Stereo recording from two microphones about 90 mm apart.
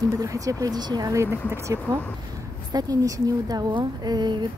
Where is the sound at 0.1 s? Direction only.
40° right (ahead or behind).